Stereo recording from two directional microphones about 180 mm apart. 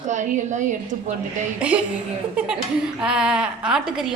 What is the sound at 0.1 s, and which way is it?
Speech, 45° right (ahead or behind).